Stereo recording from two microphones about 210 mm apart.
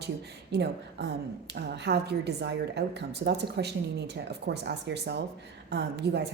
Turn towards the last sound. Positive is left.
turn(degrees=-55)  # may be behind; listen again after turning